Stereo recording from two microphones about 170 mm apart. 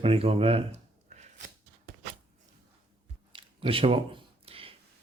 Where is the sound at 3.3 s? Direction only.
30° right (ahead or behind).